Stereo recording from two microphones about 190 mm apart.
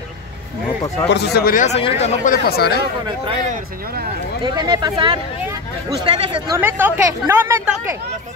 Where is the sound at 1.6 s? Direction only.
35° left (ahead or behind); by 2.7 s 55° left (ahead or behind).